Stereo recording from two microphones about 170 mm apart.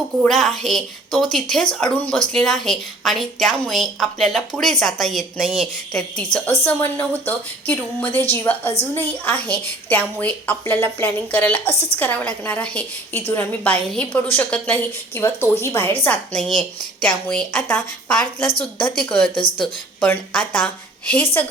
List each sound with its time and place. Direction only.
0.2 s a woman's voice: centre (ahead or behind)
18.4 s a woman's voice: 30° left (ahead or behind)
18.9 s a woman's voice: 5° left (ahead or behind)
19.3 s speech: 30° left (ahead or behind)
19.6 s a woman's voice: 5° left (ahead or behind)